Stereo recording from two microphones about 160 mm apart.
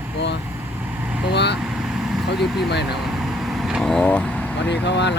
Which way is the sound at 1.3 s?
90° left.